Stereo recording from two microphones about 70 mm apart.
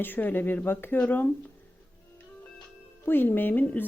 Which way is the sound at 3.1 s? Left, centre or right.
Left.